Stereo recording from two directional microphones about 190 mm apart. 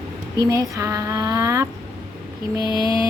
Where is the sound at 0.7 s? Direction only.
15° right (ahead or behind).